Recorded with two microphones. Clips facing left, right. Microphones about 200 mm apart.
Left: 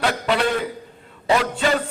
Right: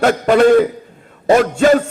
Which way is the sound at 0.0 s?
45° right (ahead or behind).